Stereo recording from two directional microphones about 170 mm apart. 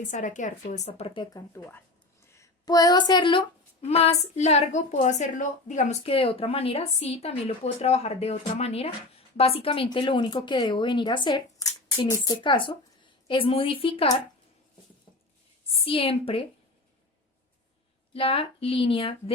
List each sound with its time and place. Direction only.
0.1 s speech: 45° left (ahead or behind); by 1.4 s 30° left (ahead or behind)
1.5 s a woman's voice: 15° left (ahead or behind); by 14.2 s 30° left (ahead or behind)
15.9 s a woman's voice: 35° left (ahead or behind)
18.1 s a woman's voice: 30° left (ahead or behind)